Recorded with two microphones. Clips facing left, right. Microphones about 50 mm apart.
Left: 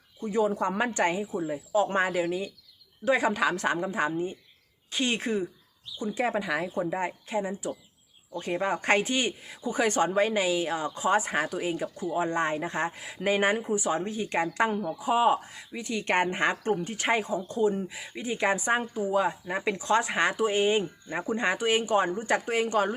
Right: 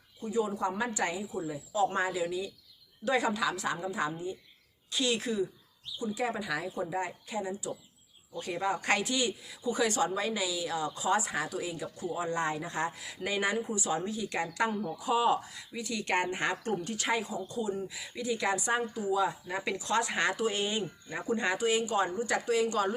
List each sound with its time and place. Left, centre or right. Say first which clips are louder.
0.2 s a woman's voice: left 5 dB; left
3.0 s speech: left 4 dB; left
3.3 s a woman's voice: left 5 dB; left
17.8 s speech: left 1 dB; left